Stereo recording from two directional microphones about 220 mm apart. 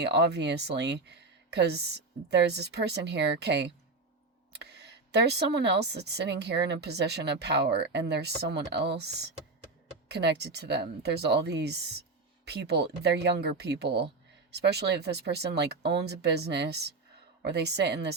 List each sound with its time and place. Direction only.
0.0 s a woman's voice: 50° right (ahead or behind)